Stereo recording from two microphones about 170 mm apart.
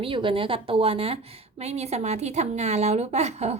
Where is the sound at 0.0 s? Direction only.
30° right (ahead or behind).